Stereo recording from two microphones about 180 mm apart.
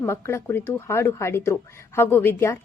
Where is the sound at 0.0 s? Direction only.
15° left (ahead or behind).